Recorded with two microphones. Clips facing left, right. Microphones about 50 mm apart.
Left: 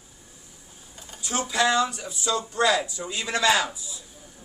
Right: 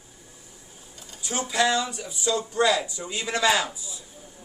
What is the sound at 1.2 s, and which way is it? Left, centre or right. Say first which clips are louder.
Speech: left 1 dB; centre.